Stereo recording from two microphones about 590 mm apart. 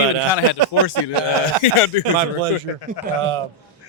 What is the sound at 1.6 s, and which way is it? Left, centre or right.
Speech, left.